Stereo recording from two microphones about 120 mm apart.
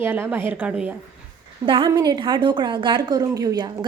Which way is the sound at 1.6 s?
45° right (ahead or behind).